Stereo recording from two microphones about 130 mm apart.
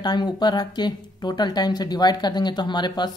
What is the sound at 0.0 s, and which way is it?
Speech, 35° left (ahead or behind).